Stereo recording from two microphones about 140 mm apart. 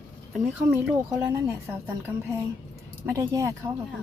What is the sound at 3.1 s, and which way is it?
Speech, 25° right (ahead or behind).